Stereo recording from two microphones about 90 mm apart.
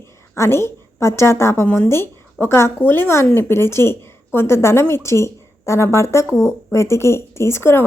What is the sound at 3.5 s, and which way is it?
Speech, 30° left (ahead or behind).